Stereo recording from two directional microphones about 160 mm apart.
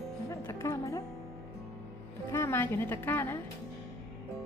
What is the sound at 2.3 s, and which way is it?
A woman's voice, 15° left (ahead or behind).